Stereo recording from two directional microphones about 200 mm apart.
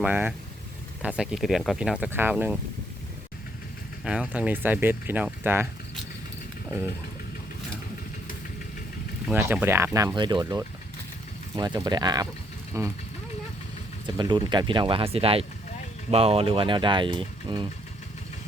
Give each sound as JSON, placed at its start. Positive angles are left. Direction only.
{"t": 0.0, "sound": "speech", "side_deg": -10}
{"t": 4.0, "sound": "speech", "side_deg": -5}
{"t": 9.3, "sound": "speech", "side_deg": -10}
{"t": 14.2, "sound": "speech", "side_deg": -20}